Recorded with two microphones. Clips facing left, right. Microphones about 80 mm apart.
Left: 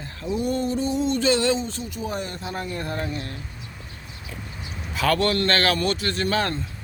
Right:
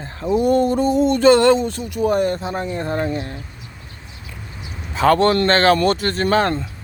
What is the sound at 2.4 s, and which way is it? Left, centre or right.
Speech, right.